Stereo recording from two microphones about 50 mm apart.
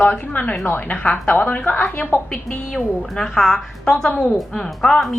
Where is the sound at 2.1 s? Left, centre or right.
Left.